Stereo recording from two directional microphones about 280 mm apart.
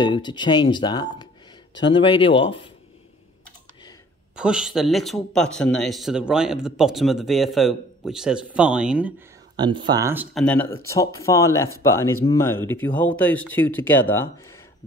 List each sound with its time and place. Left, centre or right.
0.0 s speech: centre
4.4 s speech: centre
9.6 s speech: centre
10.3 s speech: centre